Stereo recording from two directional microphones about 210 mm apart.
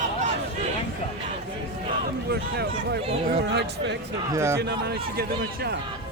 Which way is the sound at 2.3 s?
50° right (ahead or behind).